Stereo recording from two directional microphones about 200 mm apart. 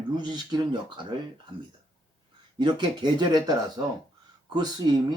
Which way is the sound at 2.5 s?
25° right (ahead or behind).